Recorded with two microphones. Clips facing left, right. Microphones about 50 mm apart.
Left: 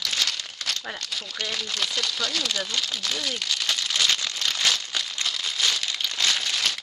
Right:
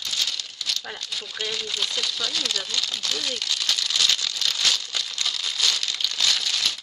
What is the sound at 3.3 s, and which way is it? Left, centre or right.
Crumpling, left.